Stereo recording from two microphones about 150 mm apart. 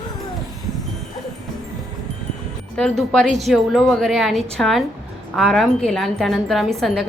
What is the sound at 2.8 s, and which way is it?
A woman's voice, 5° left (ahead or behind).